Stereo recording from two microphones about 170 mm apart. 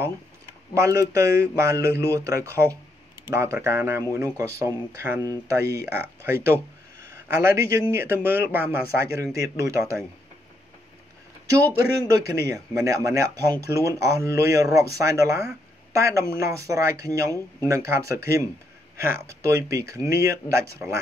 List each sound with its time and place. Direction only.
0.7 s a man's voice: 20° right (ahead or behind)
11.4 s a man's voice: 20° right (ahead or behind)